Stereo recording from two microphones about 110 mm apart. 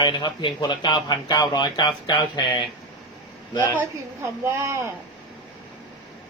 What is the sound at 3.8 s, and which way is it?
A woman's voice, 25° right (ahead or behind).